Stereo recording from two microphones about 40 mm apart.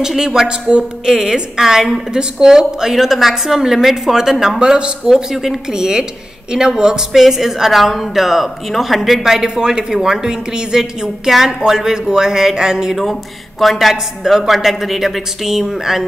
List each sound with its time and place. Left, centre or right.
0.0 s speech: centre
1.0 s speech: centre
4.6 s speech: right
5.1 s speech: centre
12.9 s a woman's voice: centre